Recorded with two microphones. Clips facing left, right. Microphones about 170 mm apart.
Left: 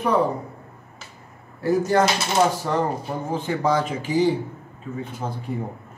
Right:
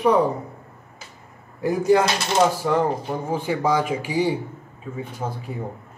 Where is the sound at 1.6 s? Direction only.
10° right (ahead or behind).